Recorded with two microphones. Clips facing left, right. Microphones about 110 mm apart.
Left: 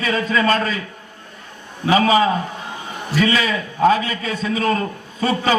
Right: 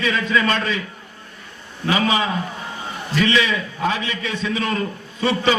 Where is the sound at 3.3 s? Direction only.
40° left (ahead or behind).